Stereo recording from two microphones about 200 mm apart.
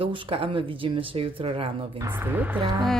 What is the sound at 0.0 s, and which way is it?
Speech, 25° right (ahead or behind).